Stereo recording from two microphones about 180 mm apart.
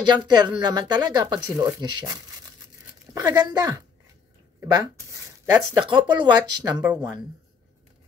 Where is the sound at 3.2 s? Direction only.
20° right (ahead or behind).